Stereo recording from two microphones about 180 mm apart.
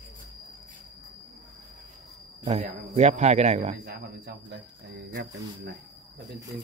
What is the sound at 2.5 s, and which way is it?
A man's voice, 40° right (ahead or behind).